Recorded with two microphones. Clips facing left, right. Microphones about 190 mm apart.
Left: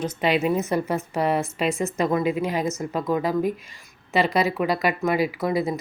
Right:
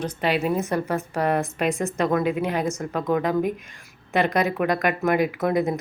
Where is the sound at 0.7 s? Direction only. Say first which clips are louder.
Left 1 dB; 10° left (ahead or behind).